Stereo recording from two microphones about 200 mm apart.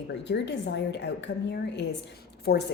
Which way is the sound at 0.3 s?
60° left (ahead or behind).